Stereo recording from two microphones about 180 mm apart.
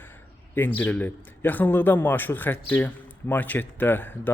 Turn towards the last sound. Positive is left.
turn(degrees=10)  # may be behind; listen again after turning